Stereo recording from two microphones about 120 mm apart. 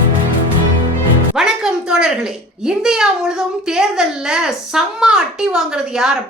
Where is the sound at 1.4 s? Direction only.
5° right (ahead or behind).